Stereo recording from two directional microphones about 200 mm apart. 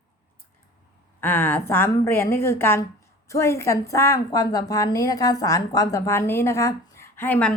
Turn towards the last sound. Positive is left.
turn(degrees=10)  # may be behind; listen again after turning